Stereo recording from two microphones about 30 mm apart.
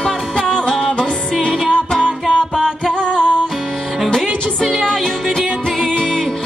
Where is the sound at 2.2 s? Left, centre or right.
Centre.